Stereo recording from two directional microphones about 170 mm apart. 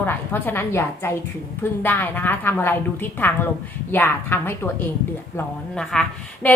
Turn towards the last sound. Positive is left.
turn(degrees=5)  # may be behind; listen again after turning